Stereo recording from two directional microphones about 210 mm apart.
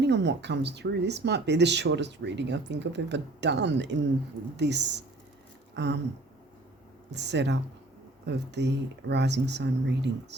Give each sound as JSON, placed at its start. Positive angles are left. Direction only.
{"t": 0.0, "sound": "speech", "side_deg": -55}
{"t": 5.7, "sound": "a sound", "side_deg": -55}
{"t": 7.1, "sound": "speech", "side_deg": -55}